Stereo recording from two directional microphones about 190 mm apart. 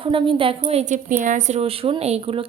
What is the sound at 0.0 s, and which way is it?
A woman's voice, 25° right (ahead or behind).